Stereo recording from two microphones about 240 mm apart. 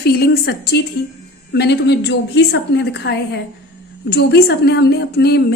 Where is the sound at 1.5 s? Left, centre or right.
Left.